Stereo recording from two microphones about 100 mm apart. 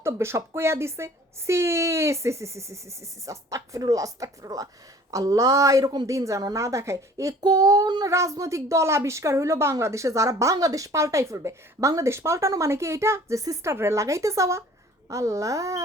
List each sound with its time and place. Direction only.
0.0 s a woman's voice: 25° right (ahead or behind)